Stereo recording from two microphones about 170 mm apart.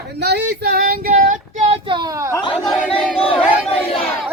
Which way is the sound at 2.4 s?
25° left (ahead or behind).